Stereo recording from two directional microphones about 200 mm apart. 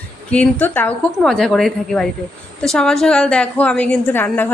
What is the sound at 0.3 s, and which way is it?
A woman's voice, 10° left (ahead or behind).